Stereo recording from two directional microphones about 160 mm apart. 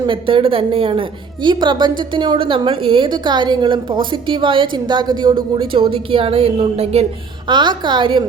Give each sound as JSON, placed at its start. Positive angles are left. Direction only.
{"t": 0.0, "sound": "a woman's voice", "side_deg": -30}